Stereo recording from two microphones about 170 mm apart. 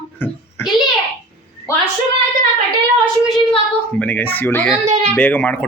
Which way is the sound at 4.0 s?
10° left (ahead or behind).